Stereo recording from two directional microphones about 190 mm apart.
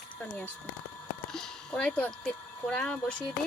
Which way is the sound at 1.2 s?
5° left (ahead or behind).